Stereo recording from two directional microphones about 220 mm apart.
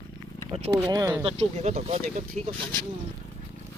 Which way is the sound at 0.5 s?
25° right (ahead or behind).